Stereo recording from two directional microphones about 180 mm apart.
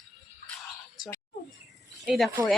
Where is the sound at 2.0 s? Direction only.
Centre (ahead or behind).